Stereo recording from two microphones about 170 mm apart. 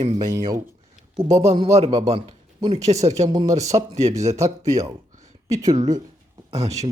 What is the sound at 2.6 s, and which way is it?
Speech, 20° right (ahead or behind).